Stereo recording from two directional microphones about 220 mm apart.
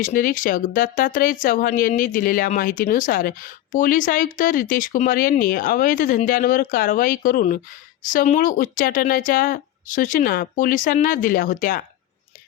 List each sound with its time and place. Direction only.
0.0 s speech: 40° left (ahead or behind)